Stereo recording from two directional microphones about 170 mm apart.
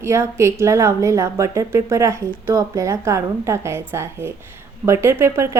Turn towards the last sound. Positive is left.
turn(degrees=-15)  # may be behind; listen again after turning